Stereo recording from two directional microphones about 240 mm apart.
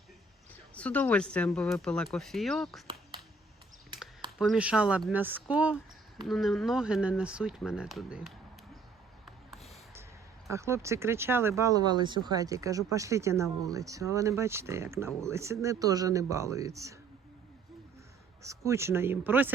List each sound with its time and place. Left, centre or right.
0.7 s speech: centre
4.4 s speech: centre
9.2 s a sound: centre
10.5 s speech: centre
18.4 s speech: centre